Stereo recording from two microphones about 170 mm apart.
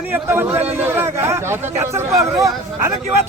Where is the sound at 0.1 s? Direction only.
10° right (ahead or behind).